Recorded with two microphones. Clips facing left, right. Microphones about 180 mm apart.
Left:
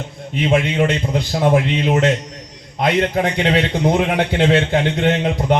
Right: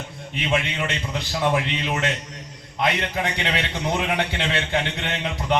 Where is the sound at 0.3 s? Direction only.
45° left (ahead or behind).